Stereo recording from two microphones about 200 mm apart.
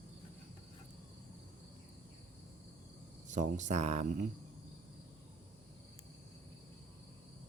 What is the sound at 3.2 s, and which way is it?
Speech, 40° right (ahead or behind).